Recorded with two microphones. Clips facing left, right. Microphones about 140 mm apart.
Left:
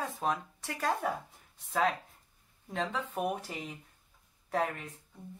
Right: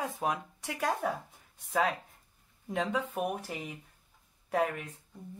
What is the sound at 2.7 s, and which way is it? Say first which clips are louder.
Speech: right 3 dB; 15° right (ahead or behind).